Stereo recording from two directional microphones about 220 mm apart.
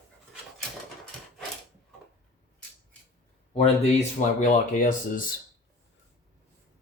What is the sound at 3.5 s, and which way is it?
Speech, 25° left (ahead or behind).